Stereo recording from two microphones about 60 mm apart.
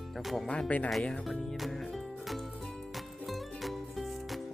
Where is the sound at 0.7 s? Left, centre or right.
Left.